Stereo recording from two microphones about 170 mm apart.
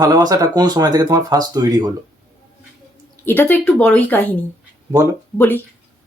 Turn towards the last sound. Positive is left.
turn(degrees=10)  # may be behind; listen again after turning